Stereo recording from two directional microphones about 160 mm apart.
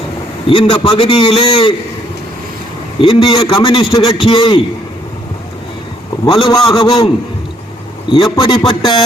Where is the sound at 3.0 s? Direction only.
35° left (ahead or behind).